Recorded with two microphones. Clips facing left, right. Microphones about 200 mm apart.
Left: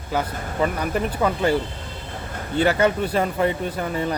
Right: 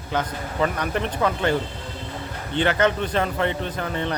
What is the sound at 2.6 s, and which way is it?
Speech, 10° left (ahead or behind).